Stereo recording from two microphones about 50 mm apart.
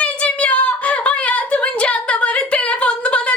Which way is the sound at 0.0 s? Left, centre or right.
Left.